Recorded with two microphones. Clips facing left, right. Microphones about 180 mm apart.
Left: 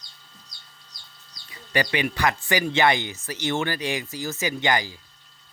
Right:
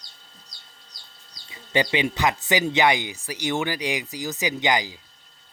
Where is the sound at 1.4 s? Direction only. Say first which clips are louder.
Right 2 dB; 20° right (ahead or behind).